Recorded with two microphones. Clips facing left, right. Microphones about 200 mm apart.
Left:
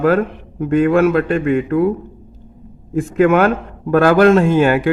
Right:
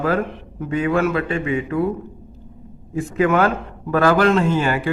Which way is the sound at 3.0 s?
55° left (ahead or behind).